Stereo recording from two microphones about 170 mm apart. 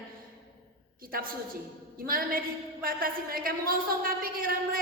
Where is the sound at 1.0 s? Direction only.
60° right (ahead or behind).